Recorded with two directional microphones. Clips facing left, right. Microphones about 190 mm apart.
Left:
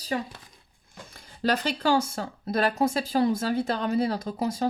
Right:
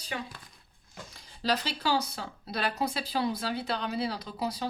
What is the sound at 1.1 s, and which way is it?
Speech, 55° left (ahead or behind).